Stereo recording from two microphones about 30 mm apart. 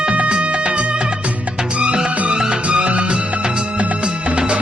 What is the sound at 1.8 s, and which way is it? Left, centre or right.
Music, right.